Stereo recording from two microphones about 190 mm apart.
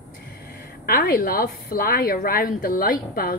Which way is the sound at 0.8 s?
55° left (ahead or behind).